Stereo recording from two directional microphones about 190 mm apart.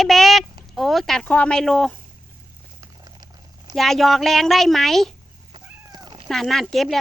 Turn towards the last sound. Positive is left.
turn(degrees=0)  # may be behind; listen again after turning